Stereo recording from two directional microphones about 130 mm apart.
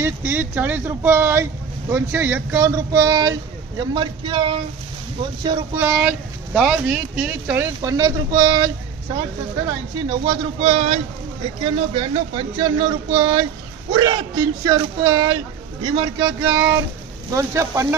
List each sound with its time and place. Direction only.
0.0 s speech: 15° right (ahead or behind); by 5.6 s 40° right (ahead or behind)
5.8 s speech: 10° right (ahead or behind)
7.8 s speech: 30° right (ahead or behind)
10.6 s speech: 55° right (ahead or behind)
11.6 s speech: 40° right (ahead or behind)
15.8 s speech: 40° right (ahead or behind)
16.2 s speech: 25° right (ahead or behind)